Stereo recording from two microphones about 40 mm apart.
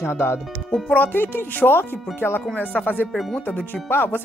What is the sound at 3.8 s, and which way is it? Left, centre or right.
Speech, left.